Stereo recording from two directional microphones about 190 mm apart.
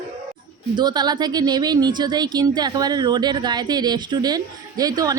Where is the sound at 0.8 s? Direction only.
20° right (ahead or behind).